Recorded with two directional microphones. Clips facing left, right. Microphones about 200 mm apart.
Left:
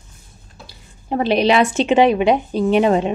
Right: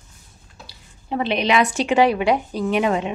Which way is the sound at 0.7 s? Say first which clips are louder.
Left 4 dB; 45° left (ahead or behind).